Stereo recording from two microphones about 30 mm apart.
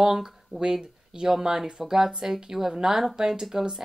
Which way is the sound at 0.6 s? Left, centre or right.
Right.